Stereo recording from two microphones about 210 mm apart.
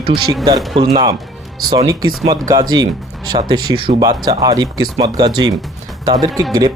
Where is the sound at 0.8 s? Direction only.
20° right (ahead or behind).